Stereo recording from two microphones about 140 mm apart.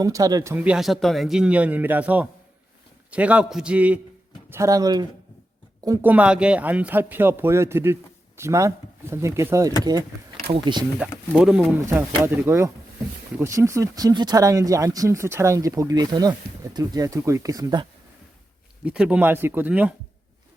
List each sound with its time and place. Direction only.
0.0 s speech: 25° right (ahead or behind)
0.5 s a man's voice: 10° right (ahead or behind)
4.4 s speech: 20° right (ahead or behind)
6.0 s a man's voice: 10° right (ahead or behind)
10.5 s speech: 35° right (ahead or behind)
11.3 s speech: 5° right (ahead or behind)
11.8 s a man's voice: 20° right (ahead or behind)
18.9 s a man's voice: 5° right (ahead or behind)